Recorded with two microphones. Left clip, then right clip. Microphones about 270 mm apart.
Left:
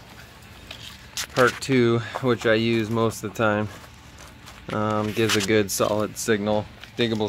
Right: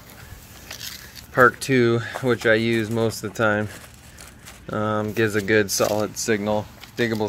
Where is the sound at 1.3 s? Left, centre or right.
Centre.